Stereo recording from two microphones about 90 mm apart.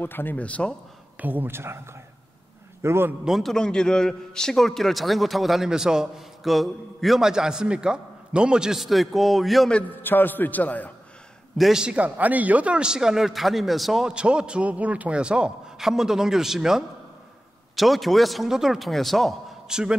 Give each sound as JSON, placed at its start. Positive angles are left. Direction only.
{"t": 0.0, "sound": "a man's voice", "side_deg": 20}
{"t": 1.1, "sound": "speech", "side_deg": -20}
{"t": 2.8, "sound": "speech", "side_deg": -25}
{"t": 3.3, "sound": "a man's voice", "side_deg": 0}
{"t": 10.0, "sound": "a man's voice", "side_deg": 20}
{"t": 11.5, "sound": "a man's voice", "side_deg": -5}